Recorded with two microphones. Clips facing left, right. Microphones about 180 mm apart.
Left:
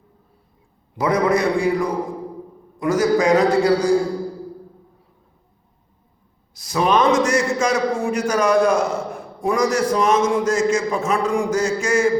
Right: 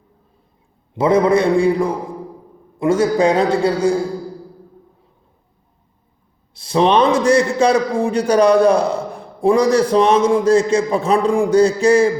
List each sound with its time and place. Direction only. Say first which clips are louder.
0.9 s a man's voice: right 5 dB; 25° right (ahead or behind)
6.5 s a man's voice: right 4 dB; 30° right (ahead or behind)